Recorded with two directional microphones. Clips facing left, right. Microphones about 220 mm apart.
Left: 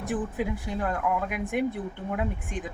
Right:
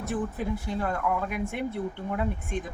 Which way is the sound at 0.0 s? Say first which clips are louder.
Left 1 dB; 15° left (ahead or behind).